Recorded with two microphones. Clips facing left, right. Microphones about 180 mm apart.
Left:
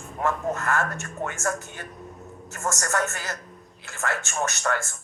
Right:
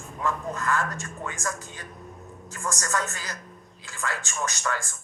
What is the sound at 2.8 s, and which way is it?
Speech, 65° left (ahead or behind).